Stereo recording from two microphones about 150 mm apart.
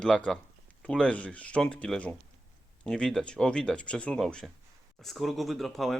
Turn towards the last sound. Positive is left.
turn(degrees=0)  # may be behind; listen again after turning